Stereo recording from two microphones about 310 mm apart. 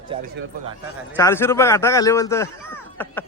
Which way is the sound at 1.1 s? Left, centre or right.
Centre.